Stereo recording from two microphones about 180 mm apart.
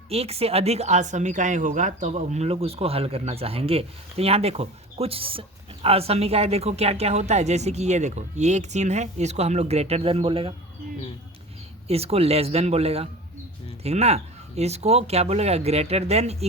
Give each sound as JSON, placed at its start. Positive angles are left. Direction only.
{"t": 0.1, "sound": "speech", "side_deg": -35}
{"t": 11.9, "sound": "speech", "side_deg": -35}